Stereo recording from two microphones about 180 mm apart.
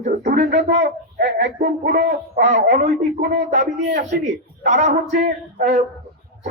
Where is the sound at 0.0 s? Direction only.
40° right (ahead or behind).